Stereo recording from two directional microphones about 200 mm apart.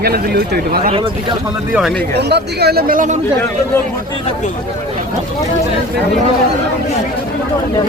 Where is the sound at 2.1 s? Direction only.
55° right (ahead or behind).